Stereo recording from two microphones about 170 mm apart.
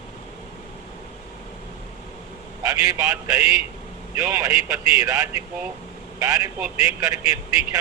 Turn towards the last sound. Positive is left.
turn(degrees=-20)  # may be behind; listen again after turning